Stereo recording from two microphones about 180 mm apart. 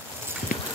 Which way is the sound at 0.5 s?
50° left (ahead or behind).